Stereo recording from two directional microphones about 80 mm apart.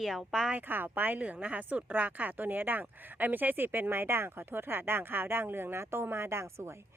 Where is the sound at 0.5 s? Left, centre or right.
Right.